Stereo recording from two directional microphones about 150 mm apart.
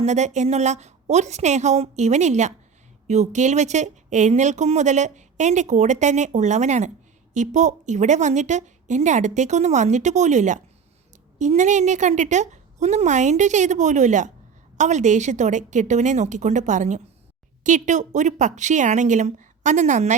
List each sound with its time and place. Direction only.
0.0 s a woman's voice: 50° right (ahead or behind)